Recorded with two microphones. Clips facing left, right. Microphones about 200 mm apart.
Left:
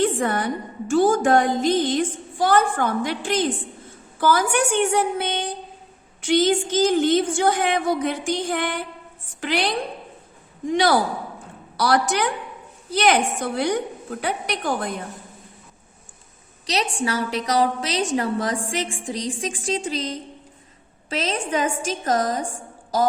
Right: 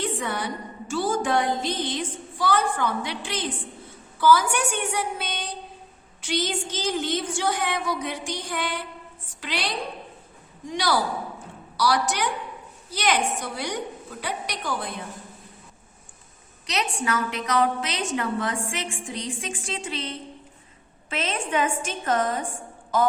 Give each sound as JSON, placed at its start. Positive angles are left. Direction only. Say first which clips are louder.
{"t": 0.0, "sound": "a woman's voice", "louder": "left 7 dB", "side_deg": 50}
{"t": 16.6, "sound": "a woman's voice", "louder": "left 3 dB", "side_deg": 35}